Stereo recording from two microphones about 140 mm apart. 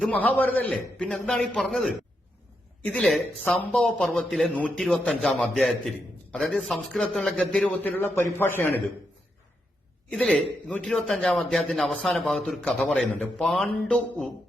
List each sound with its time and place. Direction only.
0.1 s a man's voice: 10° left (ahead or behind)
10.1 s a man's voice: 5° left (ahead or behind)